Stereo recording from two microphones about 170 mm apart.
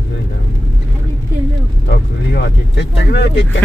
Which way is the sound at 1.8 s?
85° left.